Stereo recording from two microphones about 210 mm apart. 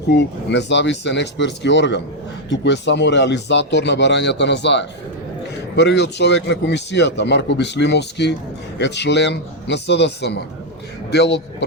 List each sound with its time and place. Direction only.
0.1 s a man's voice: 55° left (ahead or behind)